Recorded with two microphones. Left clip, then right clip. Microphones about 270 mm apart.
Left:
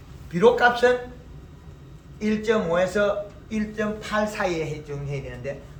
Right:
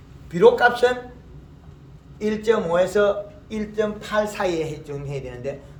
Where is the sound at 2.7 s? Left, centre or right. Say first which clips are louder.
Right 3 dB; right.